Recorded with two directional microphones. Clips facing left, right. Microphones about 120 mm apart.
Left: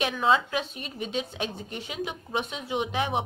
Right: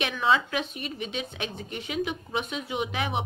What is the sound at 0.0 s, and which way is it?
A woman's voice, 35° left (ahead or behind).